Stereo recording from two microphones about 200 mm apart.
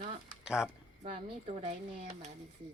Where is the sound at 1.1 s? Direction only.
30° right (ahead or behind).